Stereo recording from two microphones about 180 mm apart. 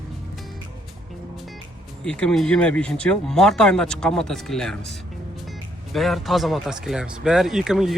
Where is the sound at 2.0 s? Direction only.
5° left (ahead or behind).